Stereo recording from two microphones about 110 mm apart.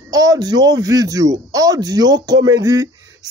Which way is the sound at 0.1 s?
35° right (ahead or behind).